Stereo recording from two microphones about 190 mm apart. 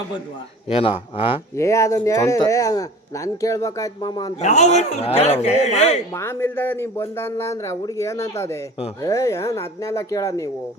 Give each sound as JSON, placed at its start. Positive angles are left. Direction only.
{"t": 0.7, "sound": "speech", "side_deg": 30}
{"t": 1.5, "sound": "speech", "side_deg": 15}
{"t": 4.4, "sound": "a man's voice", "side_deg": 35}
{"t": 6.1, "sound": "speech", "side_deg": 10}